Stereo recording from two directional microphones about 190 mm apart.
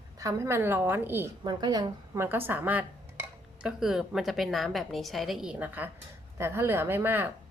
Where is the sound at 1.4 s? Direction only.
20° right (ahead or behind).